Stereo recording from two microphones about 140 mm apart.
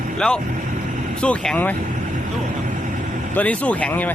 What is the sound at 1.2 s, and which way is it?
Speech, 10° left (ahead or behind).